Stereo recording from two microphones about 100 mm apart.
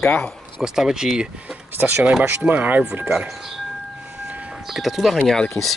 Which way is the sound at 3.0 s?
5° right (ahead or behind).